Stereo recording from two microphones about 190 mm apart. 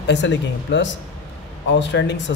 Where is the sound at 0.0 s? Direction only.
70° left (ahead or behind).